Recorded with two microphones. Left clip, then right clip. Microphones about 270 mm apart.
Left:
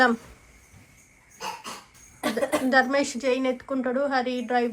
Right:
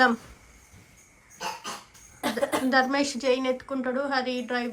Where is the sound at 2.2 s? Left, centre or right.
Centre.